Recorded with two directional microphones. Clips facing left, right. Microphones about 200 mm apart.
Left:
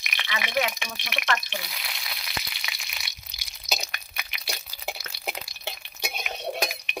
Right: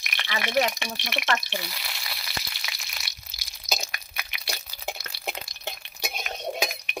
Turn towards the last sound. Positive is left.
turn(degrees=0)  # may be behind; listen again after turning